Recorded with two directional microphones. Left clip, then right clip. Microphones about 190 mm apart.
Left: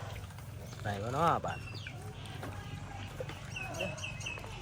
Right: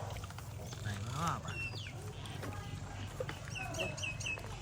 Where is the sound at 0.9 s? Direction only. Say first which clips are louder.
Left 9 dB; centre (ahead or behind).